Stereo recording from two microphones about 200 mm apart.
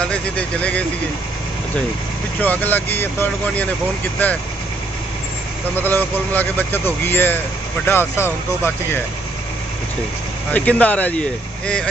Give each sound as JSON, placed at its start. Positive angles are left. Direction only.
{"t": 0.0, "sound": "speech", "side_deg": 5}
{"t": 2.4, "sound": "speech", "side_deg": 10}
{"t": 5.8, "sound": "speech", "side_deg": 10}
{"t": 10.5, "sound": "speech", "side_deg": 5}